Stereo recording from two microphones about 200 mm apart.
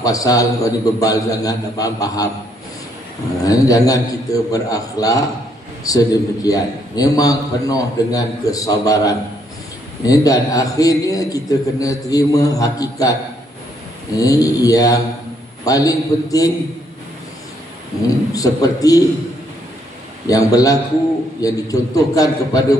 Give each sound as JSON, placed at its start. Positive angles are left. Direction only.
{"t": 0.0, "sound": "a man's voice", "side_deg": 15}
{"t": 3.4, "sound": "a man's voice", "side_deg": 15}
{"t": 14.1, "sound": "a man's voice", "side_deg": 15}
{"t": 18.3, "sound": "a man's voice", "side_deg": 15}
{"t": 20.2, "sound": "a man's voice", "side_deg": 15}